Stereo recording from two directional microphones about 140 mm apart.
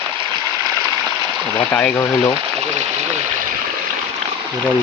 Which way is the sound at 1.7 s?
15° left (ahead or behind).